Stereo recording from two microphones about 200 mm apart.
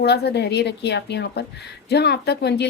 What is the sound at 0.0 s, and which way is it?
Speech, 55° left (ahead or behind).